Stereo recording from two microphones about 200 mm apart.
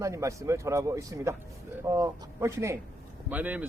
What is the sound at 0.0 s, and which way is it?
A man's voice, 15° right (ahead or behind).